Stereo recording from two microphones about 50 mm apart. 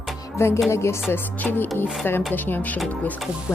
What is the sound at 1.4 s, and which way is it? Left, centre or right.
A woman's voice, left.